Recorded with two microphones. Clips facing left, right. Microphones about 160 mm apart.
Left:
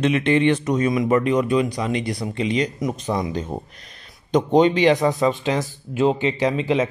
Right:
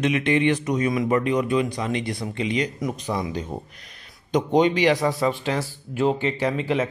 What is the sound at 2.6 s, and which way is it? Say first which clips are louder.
Speech: left 3 dB; 40° left (ahead or behind).